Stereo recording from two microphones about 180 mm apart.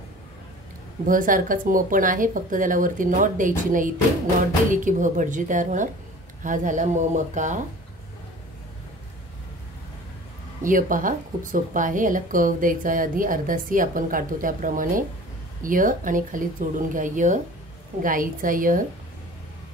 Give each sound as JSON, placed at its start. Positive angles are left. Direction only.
{"t": 1.0, "sound": "a woman's voice", "side_deg": -50}
{"t": 10.6, "sound": "a woman's voice", "side_deg": -50}